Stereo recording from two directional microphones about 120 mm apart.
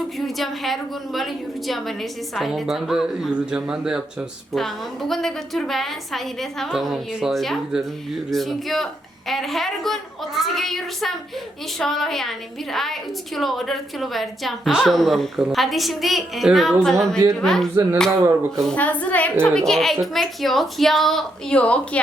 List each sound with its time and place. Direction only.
0.2 s a woman's voice: centre (ahead or behind)